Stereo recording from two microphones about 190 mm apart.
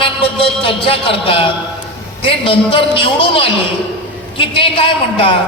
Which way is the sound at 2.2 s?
25° left (ahead or behind).